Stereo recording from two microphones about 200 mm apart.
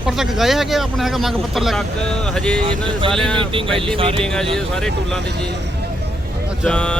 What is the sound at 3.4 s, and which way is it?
Speech, 25° right (ahead or behind).